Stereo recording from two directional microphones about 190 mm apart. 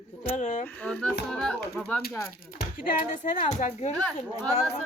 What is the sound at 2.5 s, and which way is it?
Speech, 45° left (ahead or behind).